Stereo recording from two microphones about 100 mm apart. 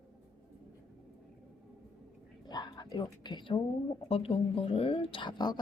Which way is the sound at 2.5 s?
45° left (ahead or behind).